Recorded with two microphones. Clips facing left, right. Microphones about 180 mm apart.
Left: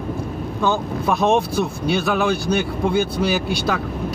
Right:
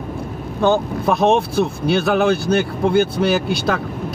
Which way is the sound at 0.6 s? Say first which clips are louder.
Right 5 dB; 55° right (ahead or behind).